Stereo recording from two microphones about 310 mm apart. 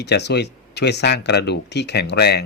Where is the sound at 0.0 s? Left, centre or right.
Left.